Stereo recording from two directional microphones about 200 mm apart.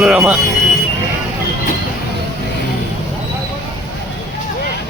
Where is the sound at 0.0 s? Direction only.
5° right (ahead or behind).